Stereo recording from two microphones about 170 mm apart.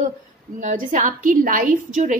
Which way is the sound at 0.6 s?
45° right (ahead or behind).